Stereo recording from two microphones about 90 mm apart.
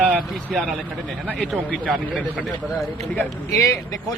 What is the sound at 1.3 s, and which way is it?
Speech, 15° left (ahead or behind).